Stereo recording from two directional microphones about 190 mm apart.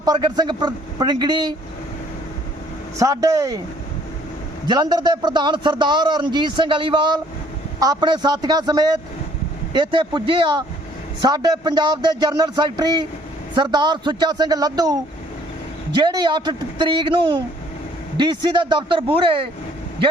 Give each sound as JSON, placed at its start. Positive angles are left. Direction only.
{"t": 0.0, "sound": "a man's voice", "side_deg": -20}
{"t": 3.0, "sound": "speech", "side_deg": -15}
{"t": 4.6, "sound": "a man's voice", "side_deg": -20}
{"t": 16.0, "sound": "a man's voice", "side_deg": -25}